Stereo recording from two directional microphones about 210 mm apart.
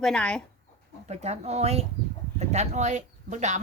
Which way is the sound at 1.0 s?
30° right (ahead or behind).